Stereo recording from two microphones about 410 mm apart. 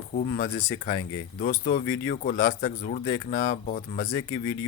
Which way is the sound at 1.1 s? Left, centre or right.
Left.